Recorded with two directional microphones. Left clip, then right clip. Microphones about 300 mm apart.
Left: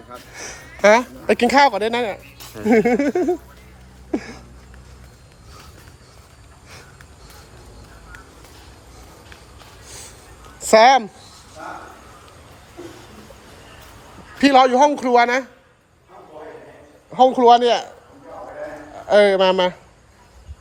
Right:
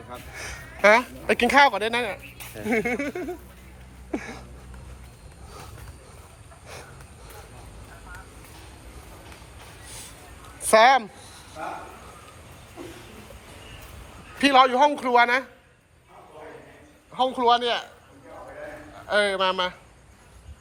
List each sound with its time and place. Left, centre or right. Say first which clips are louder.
0.3 s speech: left 4 dB; centre
4.1 s a sound: left 6 dB; centre
9.8 s vehicle: left 4 dB; left
10.6 s a woman's voice: left 5 dB; centre
14.3 s a man's voice: left 5 dB; centre
17.1 s a man's voice: left 9 dB; left
19.0 s a man's voice: left 9 dB; left